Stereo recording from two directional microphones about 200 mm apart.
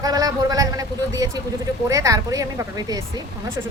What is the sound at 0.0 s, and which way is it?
A man's voice, 20° right (ahead or behind).